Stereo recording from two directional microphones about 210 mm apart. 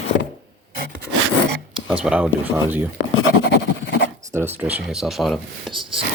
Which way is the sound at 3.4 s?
45° left (ahead or behind).